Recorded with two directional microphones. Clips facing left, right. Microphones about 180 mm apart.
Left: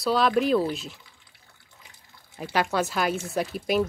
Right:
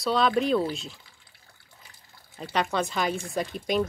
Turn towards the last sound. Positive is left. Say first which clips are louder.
# left 2 dB
turn(degrees=5)  # may be behind; listen again after turning